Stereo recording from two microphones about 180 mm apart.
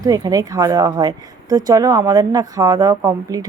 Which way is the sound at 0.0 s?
20° right (ahead or behind).